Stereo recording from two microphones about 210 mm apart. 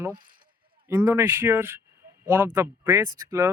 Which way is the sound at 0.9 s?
15° right (ahead or behind).